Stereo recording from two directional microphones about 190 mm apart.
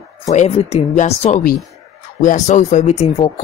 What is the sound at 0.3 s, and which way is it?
A woman's voice, 35° left (ahead or behind).